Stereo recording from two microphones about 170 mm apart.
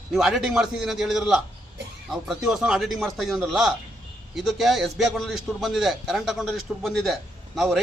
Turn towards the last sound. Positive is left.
turn(degrees=0)  # may be behind; listen again after turning